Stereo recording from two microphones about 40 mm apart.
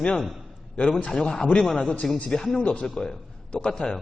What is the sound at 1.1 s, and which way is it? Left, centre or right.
Speech, centre.